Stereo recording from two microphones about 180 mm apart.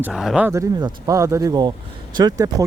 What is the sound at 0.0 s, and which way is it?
Speech, centre (ahead or behind).